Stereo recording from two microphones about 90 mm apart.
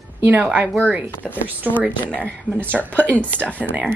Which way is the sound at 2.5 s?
20° right (ahead or behind).